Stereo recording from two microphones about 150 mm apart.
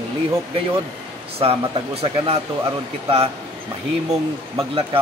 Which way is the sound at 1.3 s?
40° right (ahead or behind).